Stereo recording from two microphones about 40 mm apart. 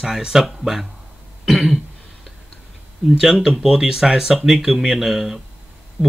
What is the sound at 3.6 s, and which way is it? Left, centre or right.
Speech, centre.